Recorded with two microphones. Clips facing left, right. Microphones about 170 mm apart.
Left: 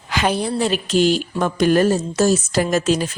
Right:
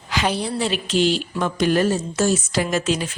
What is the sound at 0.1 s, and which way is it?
A woman's voice, 50° left (ahead or behind).